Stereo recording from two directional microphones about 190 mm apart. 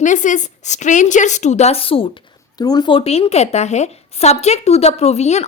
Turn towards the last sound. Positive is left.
turn(degrees=35)  # may be behind; listen again after turning